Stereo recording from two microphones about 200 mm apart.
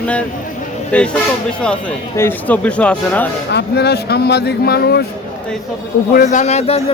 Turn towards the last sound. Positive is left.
turn(degrees=30)  # may be behind; listen again after turning